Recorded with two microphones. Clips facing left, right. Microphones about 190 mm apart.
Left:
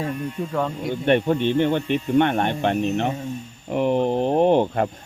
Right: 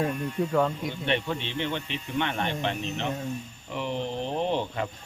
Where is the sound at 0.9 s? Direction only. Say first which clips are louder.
Left 9 dB; 50° left (ahead or behind).